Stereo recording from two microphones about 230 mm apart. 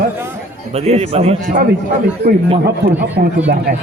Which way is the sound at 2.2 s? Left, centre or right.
Right.